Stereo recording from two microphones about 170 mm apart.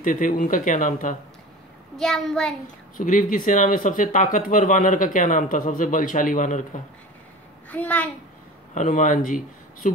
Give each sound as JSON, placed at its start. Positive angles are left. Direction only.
{"t": 0.0, "sound": "speech", "side_deg": 50}
{"t": 2.0, "sound": "a child's voice", "side_deg": 0}
{"t": 3.0, "sound": "speech", "side_deg": 55}
{"t": 7.7, "sound": "a child's voice", "side_deg": 10}
{"t": 8.7, "sound": "speech", "side_deg": 45}